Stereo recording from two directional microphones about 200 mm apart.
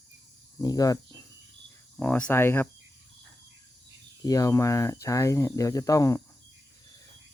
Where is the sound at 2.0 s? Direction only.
5° left (ahead or behind).